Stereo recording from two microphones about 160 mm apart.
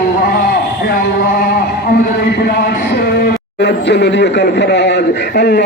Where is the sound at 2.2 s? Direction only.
85° left.